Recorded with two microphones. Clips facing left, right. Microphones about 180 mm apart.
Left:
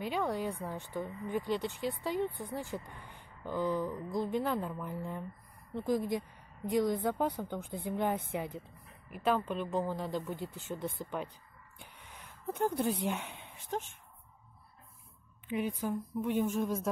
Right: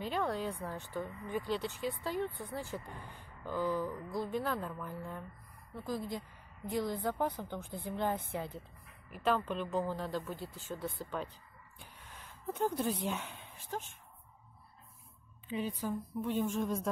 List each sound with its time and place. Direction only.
0.0 s speech: 10° left (ahead or behind)
15.5 s speech: 15° left (ahead or behind)